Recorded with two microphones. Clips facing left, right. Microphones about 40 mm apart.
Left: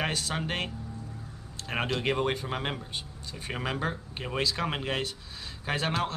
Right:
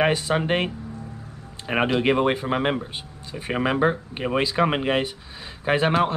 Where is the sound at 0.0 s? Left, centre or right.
Centre.